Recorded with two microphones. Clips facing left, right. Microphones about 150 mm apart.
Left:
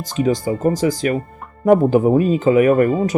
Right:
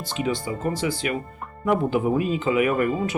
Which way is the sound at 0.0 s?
40° left (ahead or behind).